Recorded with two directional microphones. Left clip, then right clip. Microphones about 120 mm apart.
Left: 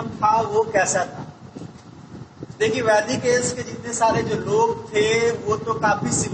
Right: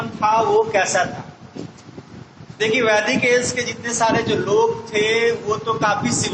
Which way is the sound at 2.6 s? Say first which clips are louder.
Right 2 dB; 40° right (ahead or behind).